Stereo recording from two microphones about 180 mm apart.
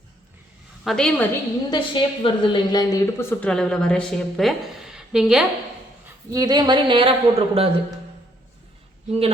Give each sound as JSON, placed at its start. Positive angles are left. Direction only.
{"t": 0.9, "sound": "a woman's voice", "side_deg": 5}
{"t": 1.7, "sound": "a woman's voice", "side_deg": 25}
{"t": 6.3, "sound": "a woman's voice", "side_deg": -20}
{"t": 9.0, "sound": "speech", "side_deg": -35}